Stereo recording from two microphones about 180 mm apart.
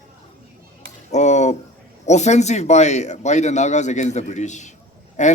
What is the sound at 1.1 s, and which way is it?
A man's voice, 40° left (ahead or behind).